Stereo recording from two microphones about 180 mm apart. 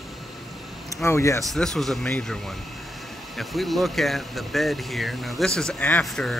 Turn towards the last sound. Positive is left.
turn(degrees=0)  # may be behind; listen again after turning